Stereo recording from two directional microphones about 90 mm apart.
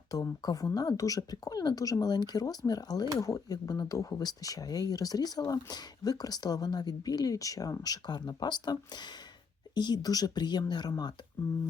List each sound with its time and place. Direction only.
0.1 s speech: 40° left (ahead or behind)